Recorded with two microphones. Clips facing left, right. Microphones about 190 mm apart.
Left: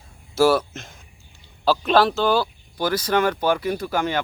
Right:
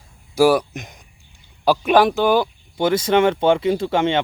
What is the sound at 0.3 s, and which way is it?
A man's voice, 15° right (ahead or behind).